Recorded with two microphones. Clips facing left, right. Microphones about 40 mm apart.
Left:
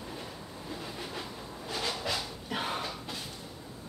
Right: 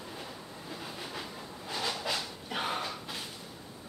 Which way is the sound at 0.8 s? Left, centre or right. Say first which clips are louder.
Even; centre.